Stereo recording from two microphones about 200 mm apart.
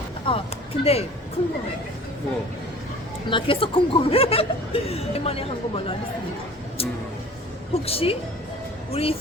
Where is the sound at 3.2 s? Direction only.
25° left (ahead or behind).